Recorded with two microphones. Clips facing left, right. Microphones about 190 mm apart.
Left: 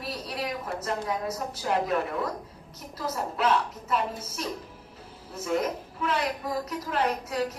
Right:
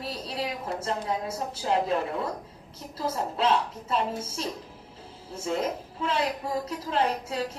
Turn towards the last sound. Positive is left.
turn(degrees=-30)  # may be behind; listen again after turning